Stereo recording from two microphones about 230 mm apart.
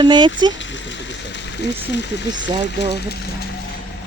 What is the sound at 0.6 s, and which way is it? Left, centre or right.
Speech, left.